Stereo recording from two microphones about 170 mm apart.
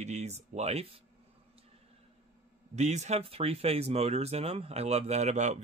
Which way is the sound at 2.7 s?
40° right (ahead or behind).